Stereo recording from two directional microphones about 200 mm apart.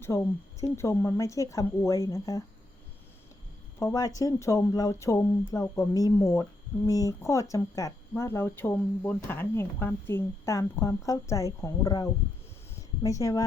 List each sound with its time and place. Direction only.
0.0 s speech: 15° left (ahead or behind)
3.8 s speech: 15° left (ahead or behind)